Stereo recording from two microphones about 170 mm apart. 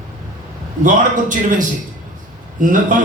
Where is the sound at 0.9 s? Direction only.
50° right (ahead or behind).